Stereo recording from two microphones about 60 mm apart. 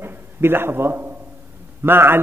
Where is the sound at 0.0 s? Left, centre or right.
Right.